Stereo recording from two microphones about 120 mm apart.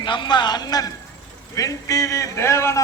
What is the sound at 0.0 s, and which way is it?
A woman's voice, 40° left (ahead or behind).